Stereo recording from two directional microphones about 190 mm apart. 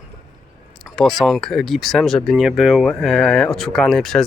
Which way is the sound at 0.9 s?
Centre (ahead or behind).